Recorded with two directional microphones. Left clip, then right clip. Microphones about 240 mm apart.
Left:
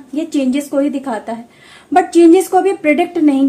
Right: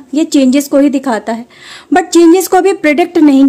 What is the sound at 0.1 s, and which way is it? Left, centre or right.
A woman's voice, right.